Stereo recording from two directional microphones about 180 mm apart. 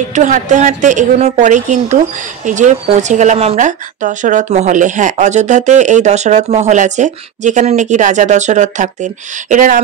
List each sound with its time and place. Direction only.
0.1 s a woman's voice: 45° right (ahead or behind)